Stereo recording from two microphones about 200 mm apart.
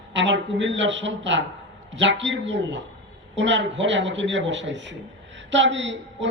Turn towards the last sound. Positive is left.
turn(degrees=-65)  # may be behind; listen again after turning